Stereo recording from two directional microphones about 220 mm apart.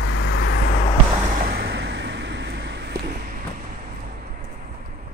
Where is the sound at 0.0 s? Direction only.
55° left (ahead or behind).